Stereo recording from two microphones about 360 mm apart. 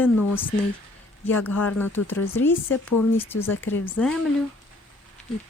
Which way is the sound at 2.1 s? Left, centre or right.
Left.